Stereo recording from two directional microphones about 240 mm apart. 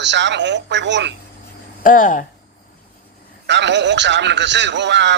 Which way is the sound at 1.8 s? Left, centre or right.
Left.